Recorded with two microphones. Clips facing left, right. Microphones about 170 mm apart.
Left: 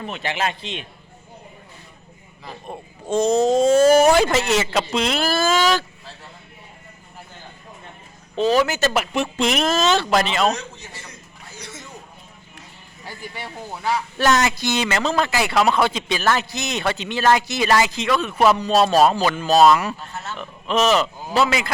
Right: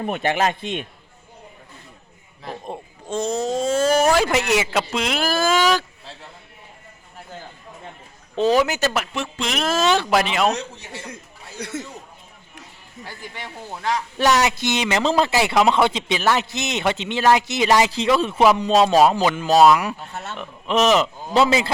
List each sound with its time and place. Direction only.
0.0 s a man's voice: 50° right (ahead or behind)
3.1 s speech: 20° left (ahead or behind); by 4.3 s centre (ahead or behind)
4.3 s speech: 15° right (ahead or behind)
8.4 s speech: 15° right (ahead or behind)
11.5 s a sound: 60° right (ahead or behind)
13.1 s speech: 10° left (ahead or behind)
14.2 s a man's voice: 15° right (ahead or behind)
17.9 s a man's voice: 30° right (ahead or behind)
21.3 s a man's voice: 30° right (ahead or behind)